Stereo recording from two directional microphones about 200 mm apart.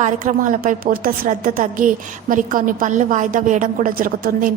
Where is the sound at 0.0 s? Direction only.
40° right (ahead or behind).